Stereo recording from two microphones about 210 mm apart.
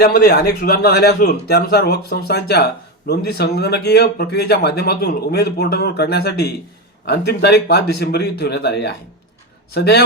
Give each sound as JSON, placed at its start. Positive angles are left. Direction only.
{"t": 0.0, "sound": "speech", "side_deg": 50}